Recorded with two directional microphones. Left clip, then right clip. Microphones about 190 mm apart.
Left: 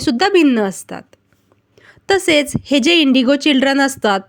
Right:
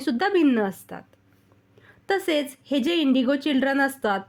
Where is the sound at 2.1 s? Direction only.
25° left (ahead or behind).